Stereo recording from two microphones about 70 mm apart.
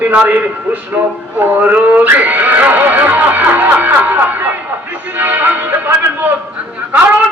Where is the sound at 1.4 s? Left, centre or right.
Right.